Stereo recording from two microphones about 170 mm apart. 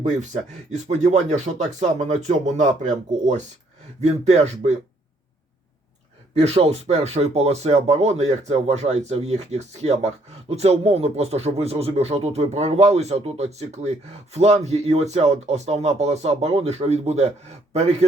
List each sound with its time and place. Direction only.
0.7 s speech: 45° right (ahead or behind)
6.3 s speech: 40° right (ahead or behind)